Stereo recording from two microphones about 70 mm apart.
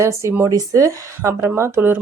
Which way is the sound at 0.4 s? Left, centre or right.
Right.